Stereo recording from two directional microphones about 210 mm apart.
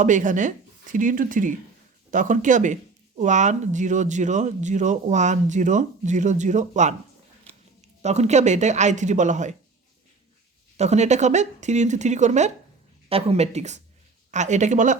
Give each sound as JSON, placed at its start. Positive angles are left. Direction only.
{"t": 0.0, "sound": "speech", "side_deg": -35}
{"t": 10.8, "sound": "speech", "side_deg": -30}